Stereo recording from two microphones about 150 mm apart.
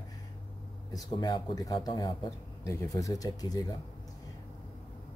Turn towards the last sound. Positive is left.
turn(degrees=25)  # may be behind; listen again after turning